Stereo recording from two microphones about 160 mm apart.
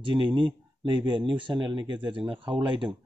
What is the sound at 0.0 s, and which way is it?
Speech, 30° right (ahead or behind).